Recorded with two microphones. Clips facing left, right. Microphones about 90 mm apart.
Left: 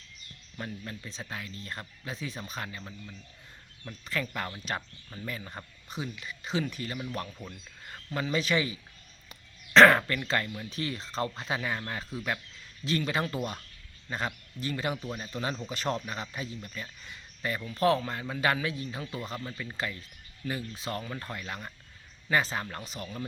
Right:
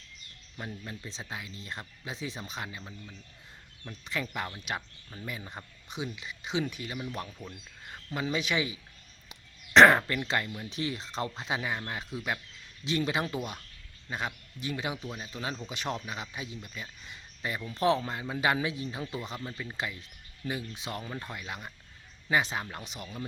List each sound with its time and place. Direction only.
0.5 s speech: 10° right (ahead or behind)
4.0 s speech: 15° right (ahead or behind)
7.3 s speech: centre (ahead or behind)
7.5 s speech: 10° right (ahead or behind)
9.3 s a sound: 20° right (ahead or behind)
10.1 s speech: 20° right (ahead or behind)
14.9 s speech: centre (ahead or behind)
15.7 s speech: 10° right (ahead or behind)